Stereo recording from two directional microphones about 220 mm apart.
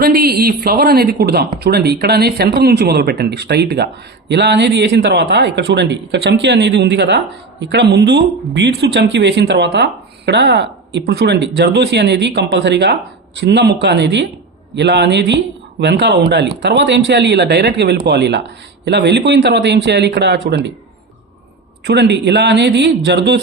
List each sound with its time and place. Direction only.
0.0 s speech: 45° right (ahead or behind)
21.8 s speech: 50° right (ahead or behind)